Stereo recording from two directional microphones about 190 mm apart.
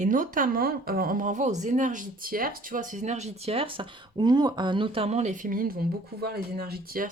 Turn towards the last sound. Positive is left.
turn(degrees=-50)  # may be behind; listen again after turning